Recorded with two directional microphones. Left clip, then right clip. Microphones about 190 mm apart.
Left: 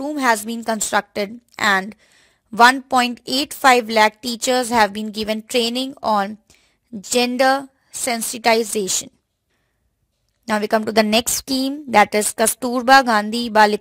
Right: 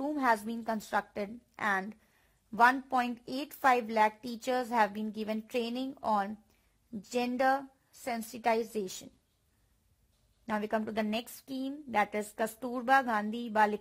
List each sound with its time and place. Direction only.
0.0 s a woman's voice: 25° left (ahead or behind)
10.4 s a woman's voice: 40° left (ahead or behind)